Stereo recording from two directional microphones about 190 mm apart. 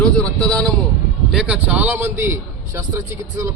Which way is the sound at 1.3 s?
5° right (ahead or behind).